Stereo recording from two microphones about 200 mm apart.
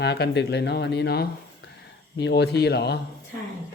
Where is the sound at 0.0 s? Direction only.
55° left (ahead or behind).